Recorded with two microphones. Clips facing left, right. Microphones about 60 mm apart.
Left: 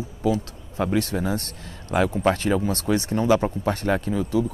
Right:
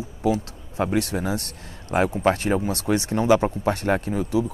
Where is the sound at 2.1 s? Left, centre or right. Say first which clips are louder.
Even; centre.